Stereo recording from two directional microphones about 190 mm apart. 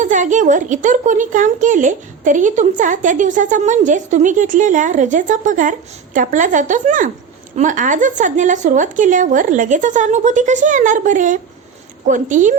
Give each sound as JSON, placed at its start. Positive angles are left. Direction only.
{"t": 0.0, "sound": "a child's voice", "side_deg": -40}